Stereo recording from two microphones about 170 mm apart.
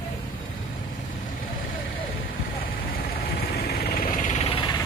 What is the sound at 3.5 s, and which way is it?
Engine, 65° left (ahead or behind).